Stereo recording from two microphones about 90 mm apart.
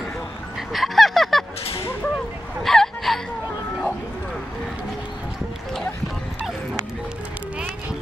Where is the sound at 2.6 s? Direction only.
5° left (ahead or behind).